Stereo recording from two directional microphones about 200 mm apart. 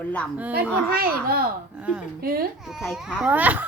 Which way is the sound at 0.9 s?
50° right (ahead or behind).